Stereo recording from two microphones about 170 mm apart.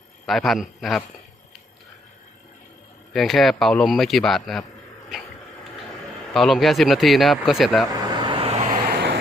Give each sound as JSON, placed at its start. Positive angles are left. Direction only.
{"t": 0.3, "sound": "speech", "side_deg": 0}
{"t": 3.1, "sound": "speech", "side_deg": 0}
{"t": 5.1, "sound": "a sound", "side_deg": -5}
{"t": 6.3, "sound": "speech", "side_deg": 0}
{"t": 8.1, "sound": "vehicle", "side_deg": -30}
{"t": 8.9, "sound": "vehicle", "side_deg": -70}